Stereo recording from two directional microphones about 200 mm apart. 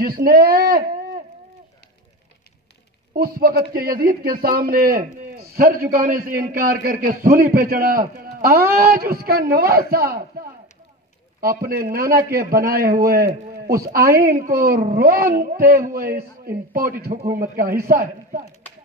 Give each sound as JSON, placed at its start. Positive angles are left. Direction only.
{"t": 0.0, "sound": "a man's voice", "side_deg": -50}
{"t": 3.2, "sound": "a man's voice", "side_deg": -50}
{"t": 11.6, "sound": "a man's voice", "side_deg": -50}